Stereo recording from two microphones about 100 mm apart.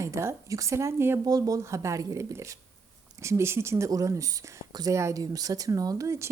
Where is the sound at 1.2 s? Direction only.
35° right (ahead or behind).